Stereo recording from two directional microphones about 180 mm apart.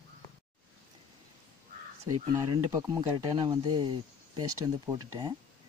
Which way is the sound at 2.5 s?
20° right (ahead or behind).